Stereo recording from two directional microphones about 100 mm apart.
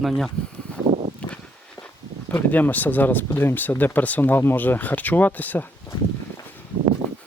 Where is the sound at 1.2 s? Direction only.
10° left (ahead or behind).